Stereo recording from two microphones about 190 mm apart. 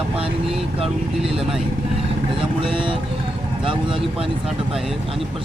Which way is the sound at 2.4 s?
25° right (ahead or behind).